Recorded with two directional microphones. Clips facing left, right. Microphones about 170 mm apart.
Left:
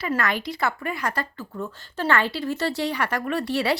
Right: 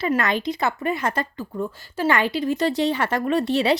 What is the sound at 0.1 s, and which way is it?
Speech, 20° right (ahead or behind).